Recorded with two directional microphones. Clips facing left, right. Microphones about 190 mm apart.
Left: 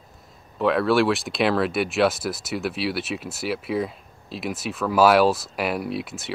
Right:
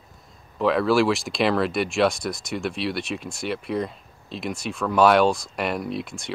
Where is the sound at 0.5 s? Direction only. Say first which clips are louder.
Even; centre (ahead or behind).